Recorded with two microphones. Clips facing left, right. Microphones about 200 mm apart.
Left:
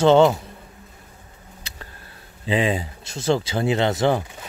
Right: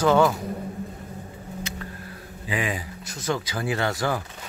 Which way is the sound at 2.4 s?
25° left (ahead or behind).